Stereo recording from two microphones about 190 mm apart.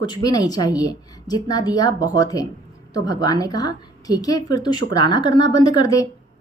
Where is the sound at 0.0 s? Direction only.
20° left (ahead or behind).